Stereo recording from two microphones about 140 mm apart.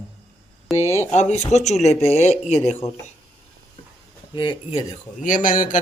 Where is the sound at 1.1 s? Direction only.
55° left (ahead or behind).